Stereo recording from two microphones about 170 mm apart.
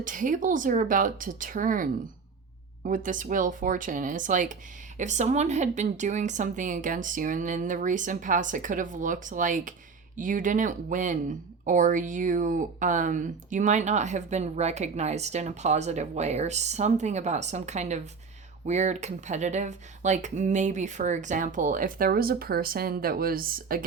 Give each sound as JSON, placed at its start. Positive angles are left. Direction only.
{"t": 0.0, "sound": "speech", "side_deg": -50}